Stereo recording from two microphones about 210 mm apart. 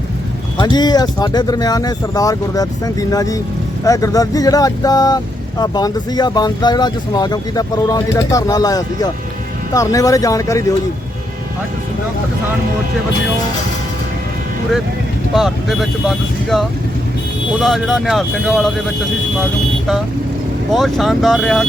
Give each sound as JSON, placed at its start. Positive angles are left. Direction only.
{"t": 0.5, "sound": "speech", "side_deg": 20}
{"t": 15.4, "sound": "speech", "side_deg": 0}
{"t": 20.7, "sound": "speech", "side_deg": 0}